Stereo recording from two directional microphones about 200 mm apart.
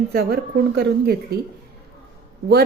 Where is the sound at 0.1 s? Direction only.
50° right (ahead or behind).